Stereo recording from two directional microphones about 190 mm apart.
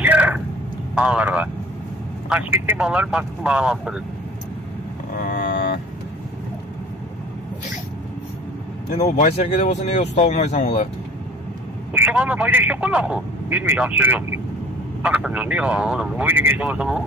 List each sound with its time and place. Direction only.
0.0 s a sound: 10° right (ahead or behind)
0.9 s speech: 5° right (ahead or behind)
5.1 s vehicle: 45° left (ahead or behind)
9.0 s speech: 35° left (ahead or behind)
11.9 s speech: 10° right (ahead or behind)